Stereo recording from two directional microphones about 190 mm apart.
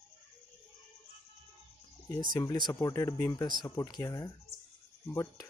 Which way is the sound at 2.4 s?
20° left (ahead or behind).